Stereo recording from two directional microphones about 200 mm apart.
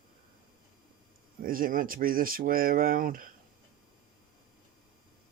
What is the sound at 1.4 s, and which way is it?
Speech, 45° right (ahead or behind).